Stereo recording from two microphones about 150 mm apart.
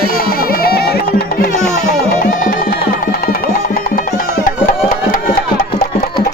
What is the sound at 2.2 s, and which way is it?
Music, 70° left (ahead or behind).